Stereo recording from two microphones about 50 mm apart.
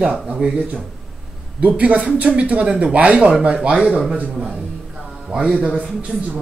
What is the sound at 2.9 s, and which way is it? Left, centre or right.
A man's voice, right.